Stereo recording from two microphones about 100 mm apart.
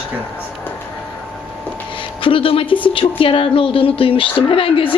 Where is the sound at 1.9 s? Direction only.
60° left (ahead or behind).